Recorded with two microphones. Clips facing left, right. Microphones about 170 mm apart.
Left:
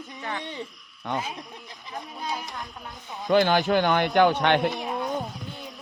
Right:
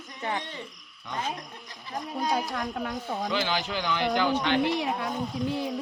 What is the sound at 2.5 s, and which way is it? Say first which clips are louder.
Speech: right 7 dB; 80° right.